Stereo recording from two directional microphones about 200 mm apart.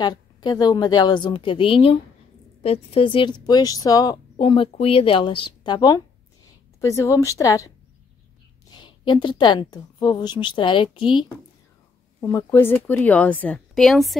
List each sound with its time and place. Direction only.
0.0 s a woman's voice: 20° left (ahead or behind); by 14.1 s centre (ahead or behind)